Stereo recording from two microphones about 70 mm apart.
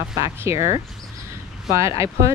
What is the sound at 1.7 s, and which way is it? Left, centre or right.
Speech, right.